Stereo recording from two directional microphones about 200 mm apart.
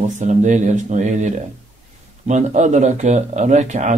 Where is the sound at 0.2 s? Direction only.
35° right (ahead or behind).